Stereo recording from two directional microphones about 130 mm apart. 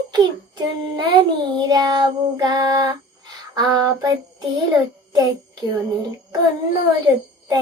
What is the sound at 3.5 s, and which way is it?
Female singing, 30° right (ahead or behind).